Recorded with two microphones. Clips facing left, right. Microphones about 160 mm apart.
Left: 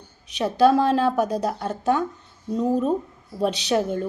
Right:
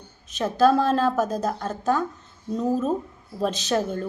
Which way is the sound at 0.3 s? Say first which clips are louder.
Left 1 dB; 15° left (ahead or behind).